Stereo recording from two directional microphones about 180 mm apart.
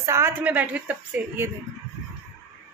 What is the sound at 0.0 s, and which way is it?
A woman's voice, 15° right (ahead or behind).